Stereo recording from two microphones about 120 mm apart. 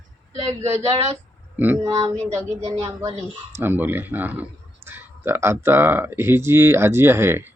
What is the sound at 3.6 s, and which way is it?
Speech, 15° right (ahead or behind).